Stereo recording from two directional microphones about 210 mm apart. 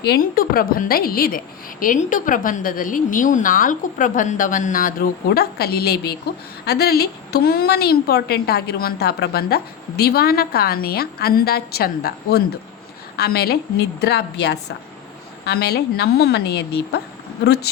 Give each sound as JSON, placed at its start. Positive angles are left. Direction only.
{"t": 0.0, "sound": "a woman's voice", "side_deg": 45}